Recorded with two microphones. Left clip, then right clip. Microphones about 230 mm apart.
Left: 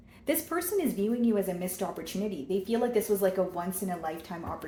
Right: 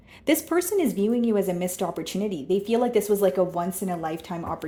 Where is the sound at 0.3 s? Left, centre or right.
Right.